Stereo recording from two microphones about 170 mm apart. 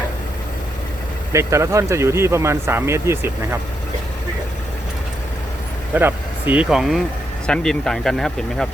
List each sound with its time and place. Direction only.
1.3 s speech: 15° right (ahead or behind)
5.9 s speech: 10° right (ahead or behind)